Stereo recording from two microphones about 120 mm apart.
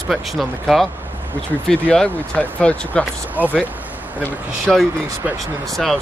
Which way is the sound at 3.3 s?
15° right (ahead or behind).